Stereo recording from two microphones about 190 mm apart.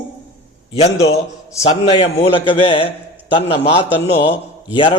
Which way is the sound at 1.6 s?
35° left (ahead or behind).